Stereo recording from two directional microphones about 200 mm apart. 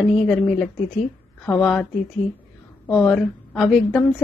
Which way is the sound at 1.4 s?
5° left (ahead or behind).